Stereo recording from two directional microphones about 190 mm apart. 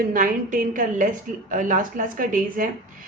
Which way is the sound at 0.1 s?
45° right (ahead or behind).